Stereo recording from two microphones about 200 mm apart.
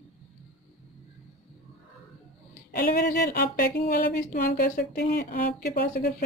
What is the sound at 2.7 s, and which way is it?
Speech, 50° left (ahead or behind).